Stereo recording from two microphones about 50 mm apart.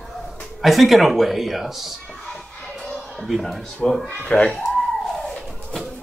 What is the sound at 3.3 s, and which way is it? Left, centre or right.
Speech, centre.